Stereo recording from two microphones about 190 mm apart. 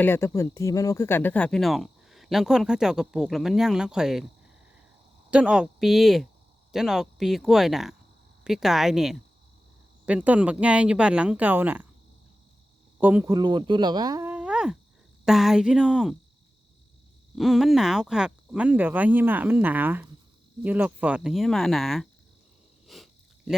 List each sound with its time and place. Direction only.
0.0 s speech: 10° left (ahead or behind)
5.3 s speech: 5° right (ahead or behind)
13.0 s speech: 10° right (ahead or behind)
13.3 s speech: 25° right (ahead or behind); by 16.1 s 5° right (ahead or behind)
17.3 s speech: centre (ahead or behind)
22.9 s a sound: centre (ahead or behind)